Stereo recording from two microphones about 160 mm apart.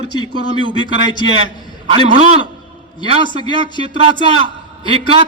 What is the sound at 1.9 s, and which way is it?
Speech, 40° right (ahead or behind).